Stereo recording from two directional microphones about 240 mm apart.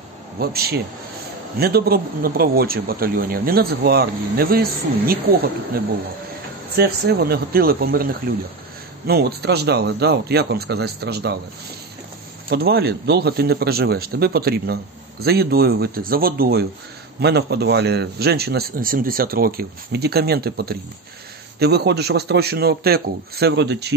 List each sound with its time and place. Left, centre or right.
0.4 s speech: right
6.8 s speech: right
12.4 s speech: right